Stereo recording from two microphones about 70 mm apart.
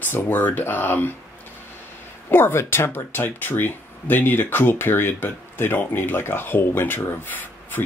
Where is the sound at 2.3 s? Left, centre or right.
Left.